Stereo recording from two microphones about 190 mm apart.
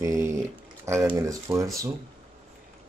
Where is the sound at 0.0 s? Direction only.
15° right (ahead or behind).